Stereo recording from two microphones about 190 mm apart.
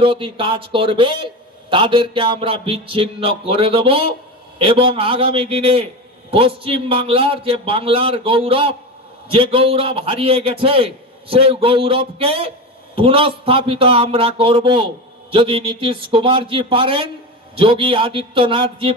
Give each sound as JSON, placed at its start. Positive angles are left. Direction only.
{"t": 0.0, "sound": "a man's voice", "side_deg": -25}